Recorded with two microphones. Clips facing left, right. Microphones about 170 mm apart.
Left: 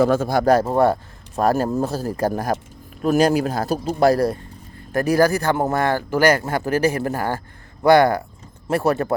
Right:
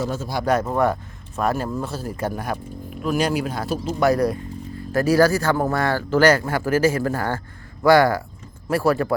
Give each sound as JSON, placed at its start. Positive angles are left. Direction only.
{"t": 0.0, "sound": "speech", "side_deg": 60}
{"t": 0.5, "sound": "speech", "side_deg": 30}
{"t": 1.4, "sound": "speech", "side_deg": 40}
{"t": 4.9, "sound": "a man's voice", "side_deg": 15}